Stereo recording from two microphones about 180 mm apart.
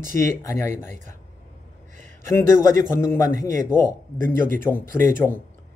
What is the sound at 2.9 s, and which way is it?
Speech, 15° left (ahead or behind).